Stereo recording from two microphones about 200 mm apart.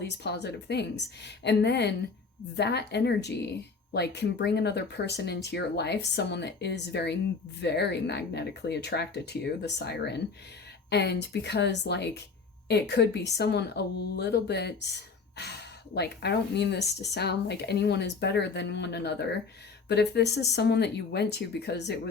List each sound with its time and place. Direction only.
0.0 s speech: 55° left (ahead or behind)